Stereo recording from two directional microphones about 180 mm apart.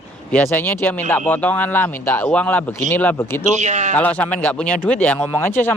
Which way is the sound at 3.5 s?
40° right (ahead or behind).